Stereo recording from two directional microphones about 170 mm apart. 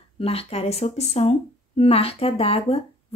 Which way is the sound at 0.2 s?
35° left (ahead or behind).